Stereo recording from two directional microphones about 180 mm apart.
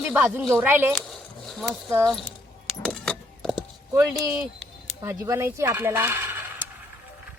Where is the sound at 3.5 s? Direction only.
20° right (ahead or behind).